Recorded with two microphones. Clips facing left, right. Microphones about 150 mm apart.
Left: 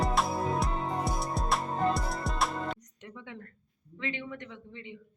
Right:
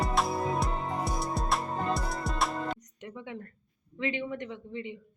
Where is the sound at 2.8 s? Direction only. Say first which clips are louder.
Right 4 dB; 15° right (ahead or behind).